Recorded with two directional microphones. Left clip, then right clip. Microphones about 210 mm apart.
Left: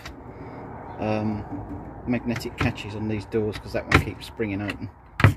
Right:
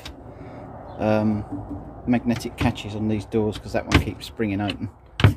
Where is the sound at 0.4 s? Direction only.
20° right (ahead or behind).